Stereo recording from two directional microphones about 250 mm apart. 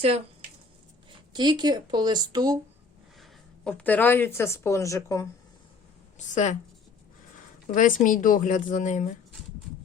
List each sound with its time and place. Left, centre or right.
1.3 s a woman's voice: centre
3.2 s speech: centre
6.1 s a woman's voice: left
7.7 s a woman's voice: left